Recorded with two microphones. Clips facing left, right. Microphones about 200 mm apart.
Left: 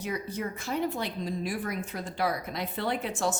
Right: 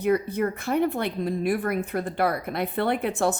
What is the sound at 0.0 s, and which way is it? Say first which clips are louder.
Speech: right 10 dB; 60° right (ahead or behind).